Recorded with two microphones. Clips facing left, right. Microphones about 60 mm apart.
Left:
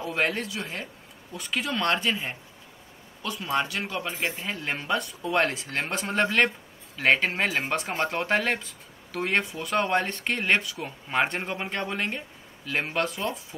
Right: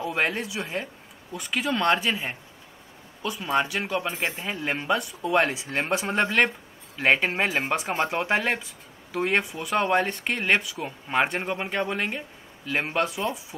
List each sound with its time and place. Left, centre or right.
0.0 s speech: centre
4.1 s speech: right
4.5 s speech: centre